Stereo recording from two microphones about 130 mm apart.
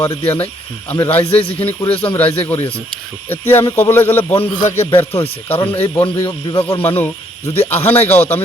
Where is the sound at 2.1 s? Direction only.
20° left (ahead or behind).